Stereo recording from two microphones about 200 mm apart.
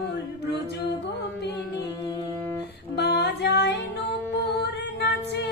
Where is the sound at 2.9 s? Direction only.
55° left (ahead or behind).